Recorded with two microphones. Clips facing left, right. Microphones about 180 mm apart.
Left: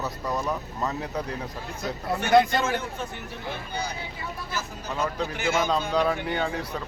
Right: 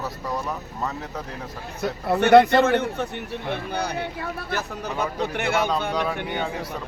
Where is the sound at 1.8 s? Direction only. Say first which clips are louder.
Right 8 dB; 65° right (ahead or behind).